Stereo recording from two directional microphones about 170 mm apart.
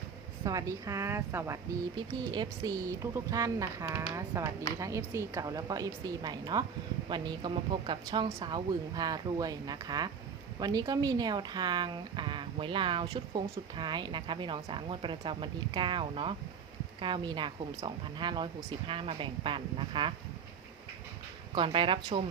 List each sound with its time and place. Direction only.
0.4 s a woman's voice: 20° right (ahead or behind)
21.5 s speech: 30° right (ahead or behind)